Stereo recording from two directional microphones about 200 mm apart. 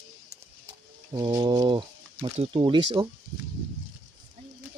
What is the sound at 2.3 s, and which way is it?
Speech, 25° right (ahead or behind).